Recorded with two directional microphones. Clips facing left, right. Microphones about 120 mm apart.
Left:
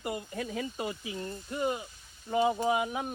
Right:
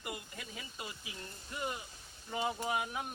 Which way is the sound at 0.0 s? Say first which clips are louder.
Left 10 dB; 45° left (ahead or behind).